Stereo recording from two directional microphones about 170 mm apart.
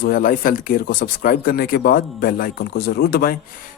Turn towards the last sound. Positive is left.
turn(degrees=65)  # may be behind; listen again after turning